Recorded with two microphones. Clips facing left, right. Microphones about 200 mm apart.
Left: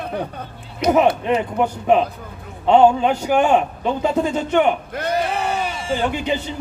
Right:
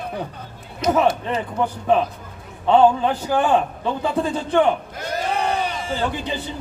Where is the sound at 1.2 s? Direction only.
15° left (ahead or behind).